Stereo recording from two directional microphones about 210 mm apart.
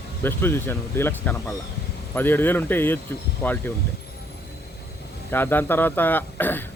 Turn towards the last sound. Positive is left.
turn(degrees=10)  # may be behind; listen again after turning